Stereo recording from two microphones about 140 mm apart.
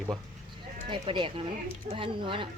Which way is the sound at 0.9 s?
35° right (ahead or behind).